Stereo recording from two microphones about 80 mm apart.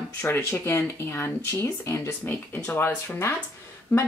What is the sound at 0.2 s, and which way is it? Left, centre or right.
A woman's voice, left.